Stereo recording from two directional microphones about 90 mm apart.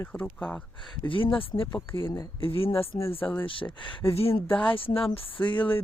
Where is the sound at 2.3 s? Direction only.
90° left.